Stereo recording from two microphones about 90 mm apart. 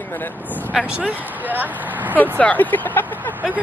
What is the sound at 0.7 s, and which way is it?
Speech, 15° right (ahead or behind).